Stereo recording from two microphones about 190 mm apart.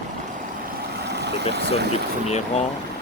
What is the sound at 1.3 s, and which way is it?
Speech, 60° right (ahead or behind).